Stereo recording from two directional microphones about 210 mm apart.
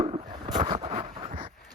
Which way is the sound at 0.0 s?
35° right (ahead or behind).